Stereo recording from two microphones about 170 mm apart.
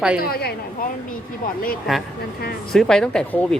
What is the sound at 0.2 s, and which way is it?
Speech, 65° left (ahead or behind).